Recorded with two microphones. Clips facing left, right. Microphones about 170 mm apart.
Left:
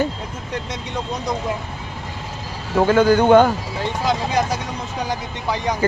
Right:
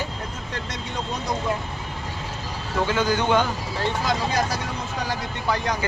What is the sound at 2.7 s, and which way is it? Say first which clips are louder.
Speech: left 8 dB; 50° left (ahead or behind).